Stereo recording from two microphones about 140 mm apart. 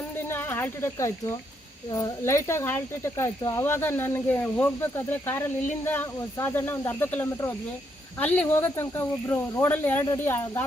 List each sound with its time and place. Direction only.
0.3 s speech: 15° left (ahead or behind)